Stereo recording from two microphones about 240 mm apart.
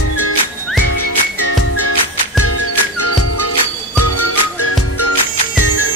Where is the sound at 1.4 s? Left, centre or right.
Left.